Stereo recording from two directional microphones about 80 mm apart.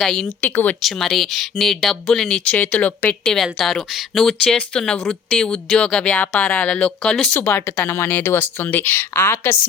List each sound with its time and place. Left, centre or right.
0.0 s speech: centre
0.4 s speech: left
0.8 s speech: centre
3.2 s speech: centre
4.4 s speech: centre
7.0 s speech: centre
7.3 s speech: left